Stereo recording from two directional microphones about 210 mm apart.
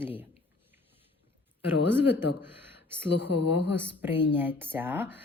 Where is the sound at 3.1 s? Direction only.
55° left (ahead or behind).